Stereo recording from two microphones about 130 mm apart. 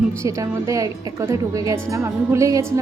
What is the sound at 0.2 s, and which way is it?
Speech, 25° right (ahead or behind).